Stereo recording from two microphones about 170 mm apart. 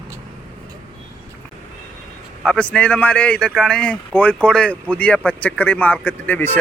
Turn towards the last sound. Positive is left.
turn(degrees=10)  # may be behind; listen again after turning